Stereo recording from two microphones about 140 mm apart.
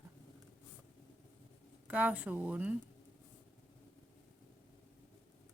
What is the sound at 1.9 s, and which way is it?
Speech, 10° right (ahead or behind).